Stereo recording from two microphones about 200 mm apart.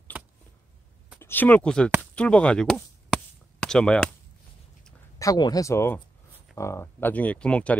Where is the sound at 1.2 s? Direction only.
10° left (ahead or behind).